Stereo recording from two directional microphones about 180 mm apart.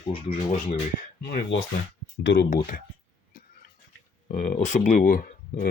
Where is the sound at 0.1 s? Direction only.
30° left (ahead or behind).